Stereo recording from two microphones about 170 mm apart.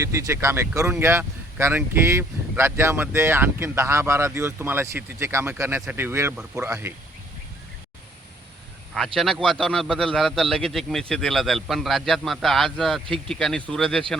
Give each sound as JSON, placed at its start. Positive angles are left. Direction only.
{"t": 0.0, "sound": "speech", "side_deg": -15}
{"t": 9.1, "sound": "a man's voice", "side_deg": 0}